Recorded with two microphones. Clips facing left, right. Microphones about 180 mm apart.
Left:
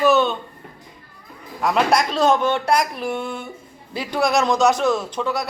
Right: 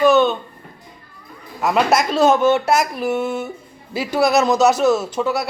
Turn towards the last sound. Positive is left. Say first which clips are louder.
# right 3 dB
turn(degrees=-5)  # may be behind; listen again after turning